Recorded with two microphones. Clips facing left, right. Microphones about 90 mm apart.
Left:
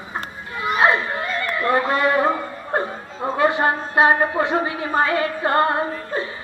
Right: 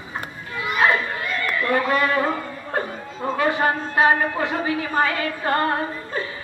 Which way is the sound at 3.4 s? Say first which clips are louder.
Left 2 dB; 25° left (ahead or behind).